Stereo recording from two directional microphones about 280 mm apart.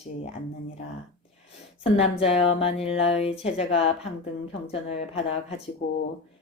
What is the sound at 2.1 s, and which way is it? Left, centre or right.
Speech, centre.